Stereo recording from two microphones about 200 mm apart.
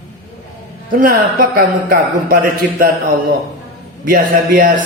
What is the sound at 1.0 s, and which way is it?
Speech, 45° right (ahead or behind).